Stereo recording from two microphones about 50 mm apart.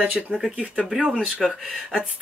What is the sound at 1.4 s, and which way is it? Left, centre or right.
Speech, centre.